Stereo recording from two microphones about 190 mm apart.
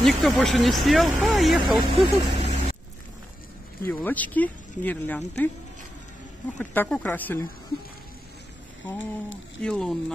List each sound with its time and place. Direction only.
0.0 s speech: centre (ahead or behind)
1.8 s speech: 35° right (ahead or behind)
3.8 s speech: 10° left (ahead or behind)
6.6 s speech: 10° left (ahead or behind)
9.6 s speech: 5° left (ahead or behind)